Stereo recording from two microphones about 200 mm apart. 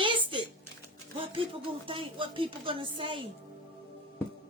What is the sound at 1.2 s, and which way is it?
Music, 25° right (ahead or behind).